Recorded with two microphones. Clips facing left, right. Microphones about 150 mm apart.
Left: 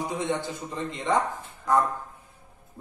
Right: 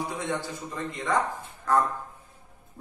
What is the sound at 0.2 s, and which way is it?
A man's voice, 20° left (ahead or behind).